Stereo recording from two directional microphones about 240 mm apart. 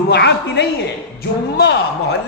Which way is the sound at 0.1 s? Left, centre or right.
Left.